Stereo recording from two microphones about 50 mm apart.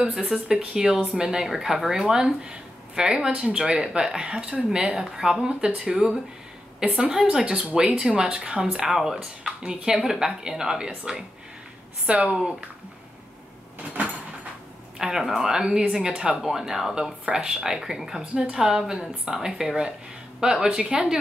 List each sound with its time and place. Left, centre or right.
0.0 s speech: centre
12.1 s speech: right
15.0 s speech: centre